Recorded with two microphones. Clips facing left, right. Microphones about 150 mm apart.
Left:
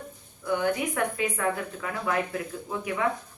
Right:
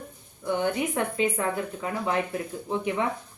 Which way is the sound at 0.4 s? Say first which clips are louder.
Even; 25° right (ahead or behind).